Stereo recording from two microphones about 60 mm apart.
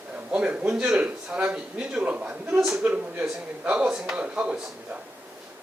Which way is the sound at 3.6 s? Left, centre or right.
Centre.